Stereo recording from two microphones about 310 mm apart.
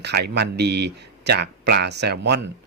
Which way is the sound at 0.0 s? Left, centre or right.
Right.